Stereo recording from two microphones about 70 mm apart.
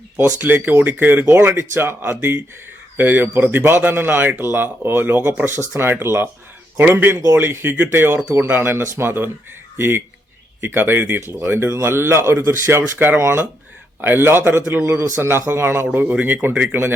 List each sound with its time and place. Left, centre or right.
0.2 s speech: right